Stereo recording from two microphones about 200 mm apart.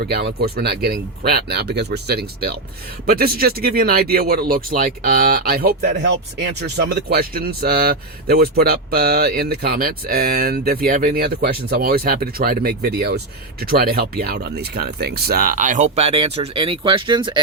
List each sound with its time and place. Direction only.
0.0 s speech: 50° right (ahead or behind); by 17.4 s 25° right (ahead or behind)